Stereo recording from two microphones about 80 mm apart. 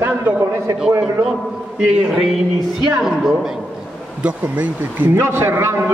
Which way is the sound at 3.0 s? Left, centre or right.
Centre.